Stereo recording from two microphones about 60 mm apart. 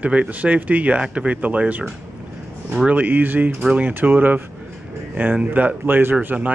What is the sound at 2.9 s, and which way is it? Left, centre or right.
Speech, right.